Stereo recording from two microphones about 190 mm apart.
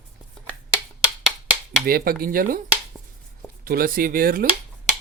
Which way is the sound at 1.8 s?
50° right (ahead or behind).